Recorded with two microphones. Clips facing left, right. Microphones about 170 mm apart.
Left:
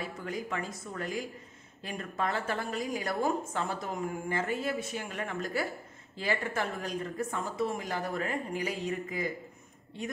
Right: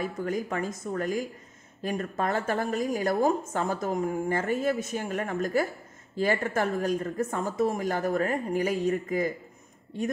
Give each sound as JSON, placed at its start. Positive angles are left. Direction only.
{"t": 0.0, "sound": "a woman's voice", "side_deg": -45}